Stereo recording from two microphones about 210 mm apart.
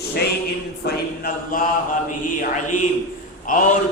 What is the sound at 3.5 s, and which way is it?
Speech, 40° left (ahead or behind).